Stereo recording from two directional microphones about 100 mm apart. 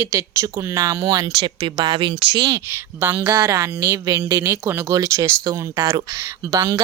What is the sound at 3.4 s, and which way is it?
Speech, 30° right (ahead or behind).